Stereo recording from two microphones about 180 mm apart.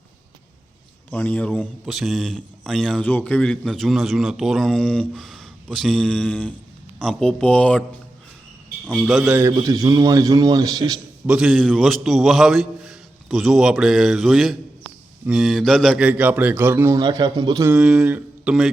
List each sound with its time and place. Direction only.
1.1 s a man's voice: 5° left (ahead or behind)
8.9 s a man's voice: centre (ahead or behind)
9.4 s a man's voice: 20° right (ahead or behind)
11.3 s a man's voice: 5° right (ahead or behind); by 17.7 s 25° right (ahead or behind)
17.7 s a man's voice: 5° right (ahead or behind)